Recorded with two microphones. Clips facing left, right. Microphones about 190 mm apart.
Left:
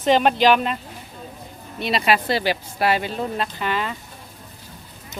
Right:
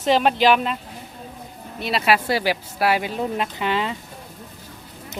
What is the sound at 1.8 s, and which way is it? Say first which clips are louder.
Speech: even; 5° right (ahead or behind).